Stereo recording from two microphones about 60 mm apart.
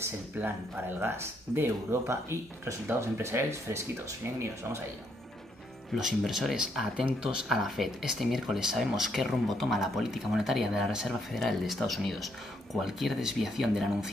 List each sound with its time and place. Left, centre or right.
0.4 s speech: right
5.9 s speech: centre
11.1 s speech: centre